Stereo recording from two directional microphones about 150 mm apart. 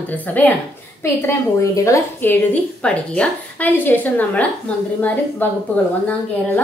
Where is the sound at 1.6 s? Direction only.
20° left (ahead or behind).